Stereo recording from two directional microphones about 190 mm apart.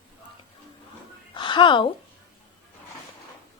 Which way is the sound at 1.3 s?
25° left (ahead or behind).